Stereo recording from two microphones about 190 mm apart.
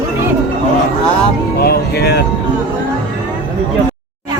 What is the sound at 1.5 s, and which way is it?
Speech, 55° left (ahead or behind).